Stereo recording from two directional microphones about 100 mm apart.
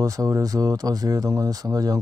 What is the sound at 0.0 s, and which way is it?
Speech, 35° right (ahead or behind).